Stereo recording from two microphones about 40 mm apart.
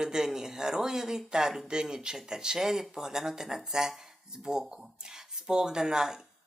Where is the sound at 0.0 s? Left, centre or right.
Centre.